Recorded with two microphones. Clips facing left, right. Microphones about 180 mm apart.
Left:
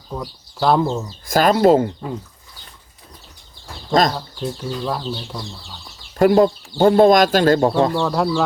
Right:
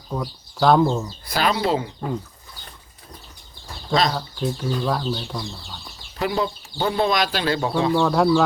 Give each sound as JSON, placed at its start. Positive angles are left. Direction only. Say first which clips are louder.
{"t": 0.1, "sound": "speech", "louder": "right 1 dB", "side_deg": 0}
{"t": 1.3, "sound": "speech", "louder": "left 8 dB", "side_deg": 45}
{"t": 4.1, "sound": "speech", "louder": "right 1 dB", "side_deg": 0}
{"t": 6.1, "sound": "speech", "louder": "left 11 dB", "side_deg": 50}
{"t": 8.0, "sound": "speech", "louder": "right 1 dB", "side_deg": 0}